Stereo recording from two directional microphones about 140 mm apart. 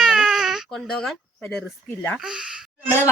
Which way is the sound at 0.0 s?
5° right (ahead or behind).